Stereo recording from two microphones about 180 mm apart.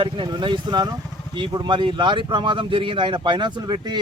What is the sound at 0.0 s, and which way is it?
Speech, 25° right (ahead or behind).